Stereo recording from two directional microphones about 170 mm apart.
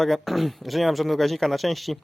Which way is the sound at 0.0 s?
Centre (ahead or behind).